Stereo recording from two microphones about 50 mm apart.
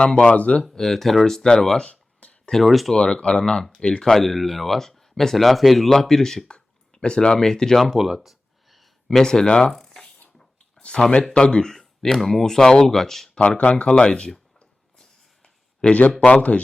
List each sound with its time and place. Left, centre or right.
0.2 s speech: left
0.7 s speech: centre
2.5 s speech: centre
2.9 s speech: centre
4.1 s speech: centre
9.0 s speech: centre
10.3 s a sound: centre
11.0 s speech: left
13.7 s speech: left
15.8 s speech: centre
16.2 s speech: left